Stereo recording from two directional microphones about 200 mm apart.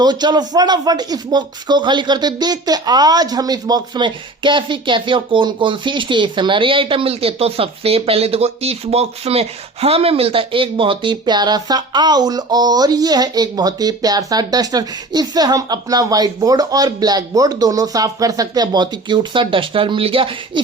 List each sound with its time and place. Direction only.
0.0 s speech: 20° right (ahead or behind)